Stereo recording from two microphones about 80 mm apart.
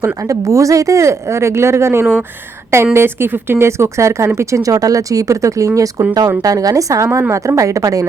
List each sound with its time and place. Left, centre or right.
0.0 s a woman's voice: right